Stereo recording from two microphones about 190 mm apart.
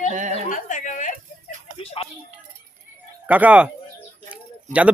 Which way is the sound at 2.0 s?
30° left (ahead or behind).